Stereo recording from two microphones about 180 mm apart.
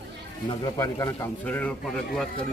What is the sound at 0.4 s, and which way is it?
A man's voice, 20° left (ahead or behind).